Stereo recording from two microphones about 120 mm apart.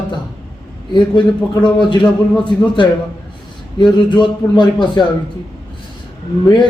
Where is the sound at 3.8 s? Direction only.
40° left (ahead or behind).